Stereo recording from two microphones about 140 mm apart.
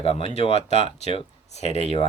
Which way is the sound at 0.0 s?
40° left (ahead or behind).